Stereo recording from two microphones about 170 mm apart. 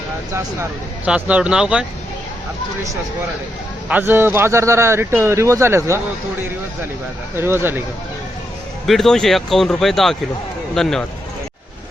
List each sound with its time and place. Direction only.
0.3 s a man's voice: 10° right (ahead or behind)
3.8 s a man's voice: 10° right (ahead or behind)
7.3 s a man's voice: 15° right (ahead or behind)
8.9 s speech: centre (ahead or behind)